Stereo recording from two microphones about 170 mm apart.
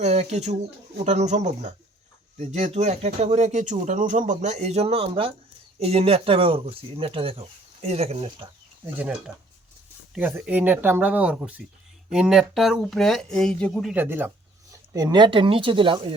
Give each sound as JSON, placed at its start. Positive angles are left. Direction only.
{"t": 0.0, "sound": "speech", "side_deg": -40}
{"t": 9.0, "sound": "speech", "side_deg": -5}
{"t": 14.0, "sound": "speech", "side_deg": -10}